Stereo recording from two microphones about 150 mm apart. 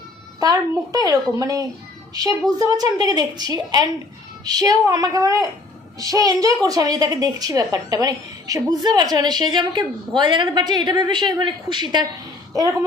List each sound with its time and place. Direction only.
0.3 s a woman's voice: 25° right (ahead or behind)